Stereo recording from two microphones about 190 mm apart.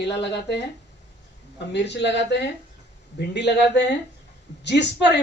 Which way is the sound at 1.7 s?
65° left (ahead or behind).